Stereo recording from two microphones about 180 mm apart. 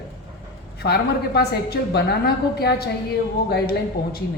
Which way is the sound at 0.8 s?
65° left (ahead or behind).